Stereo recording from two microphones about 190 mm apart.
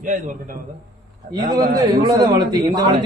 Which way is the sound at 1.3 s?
20° right (ahead or behind).